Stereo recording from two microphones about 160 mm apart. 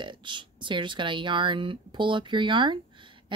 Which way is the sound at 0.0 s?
30° right (ahead or behind).